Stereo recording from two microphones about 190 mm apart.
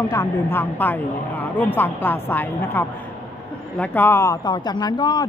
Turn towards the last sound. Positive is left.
turn(degrees=25)  # may be behind; listen again after turning